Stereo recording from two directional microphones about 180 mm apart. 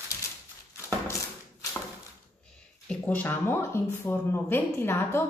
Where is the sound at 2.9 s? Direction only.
10° left (ahead or behind).